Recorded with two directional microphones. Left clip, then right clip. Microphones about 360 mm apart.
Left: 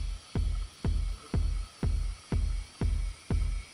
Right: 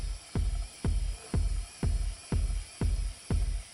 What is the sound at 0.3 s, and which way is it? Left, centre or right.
Music, centre.